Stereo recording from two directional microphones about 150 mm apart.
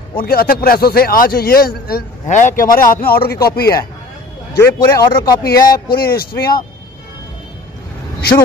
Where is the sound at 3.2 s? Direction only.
90° left.